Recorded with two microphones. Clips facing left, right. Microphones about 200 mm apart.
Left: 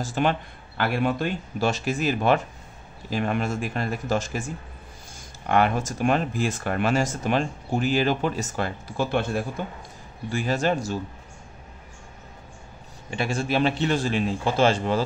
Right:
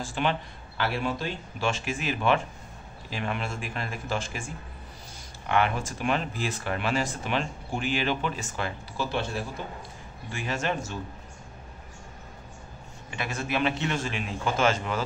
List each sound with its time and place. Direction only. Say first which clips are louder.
0.0 s speech: left 4 dB; 45° left (ahead or behind)
1.6 s a man's voice: left 5 dB; 40° left (ahead or behind)
5.5 s speech: left 4 dB; 40° left (ahead or behind)
10.3 s a man's voice: left 6 dB; 35° left (ahead or behind)
13.1 s a man's voice: left 6 dB; 30° left (ahead or behind)